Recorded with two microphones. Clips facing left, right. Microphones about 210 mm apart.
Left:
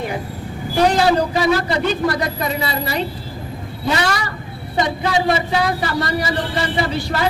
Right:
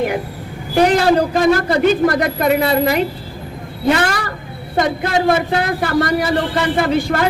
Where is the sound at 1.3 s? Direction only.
50° right (ahead or behind).